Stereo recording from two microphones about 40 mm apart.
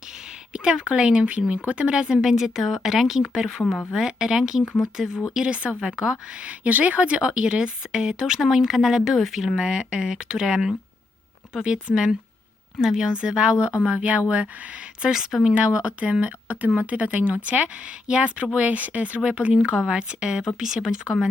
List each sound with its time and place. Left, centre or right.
0.5 s a woman's voice: right
2.1 s a woman's voice: centre
5.5 s a woman's voice: right
6.4 s a woman's voice: right; by 8.4 s centre
8.4 s speech: centre
9.6 s a woman's voice: right
13.6 s speech: right
15.0 s speech: centre
15.5 s speech: right
19.9 s a woman's voice: right